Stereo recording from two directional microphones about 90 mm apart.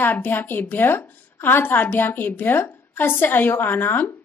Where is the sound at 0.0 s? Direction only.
20° left (ahead or behind).